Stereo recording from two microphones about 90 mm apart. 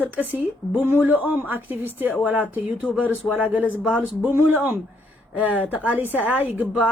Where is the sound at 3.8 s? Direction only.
Centre (ahead or behind).